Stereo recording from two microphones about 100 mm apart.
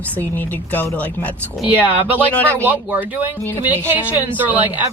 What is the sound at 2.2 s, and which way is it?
Speech, 15° left (ahead or behind).